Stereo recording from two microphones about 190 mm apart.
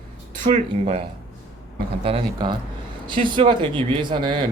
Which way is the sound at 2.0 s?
25° right (ahead or behind).